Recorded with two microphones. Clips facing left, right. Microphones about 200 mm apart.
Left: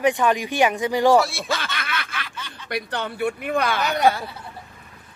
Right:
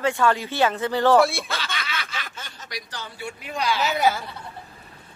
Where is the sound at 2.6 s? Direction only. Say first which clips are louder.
Left 11 dB; 60° left (ahead or behind).